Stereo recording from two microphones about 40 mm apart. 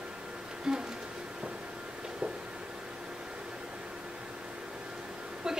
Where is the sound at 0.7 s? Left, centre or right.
Centre.